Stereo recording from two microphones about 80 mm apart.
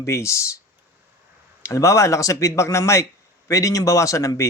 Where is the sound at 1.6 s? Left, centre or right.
Left.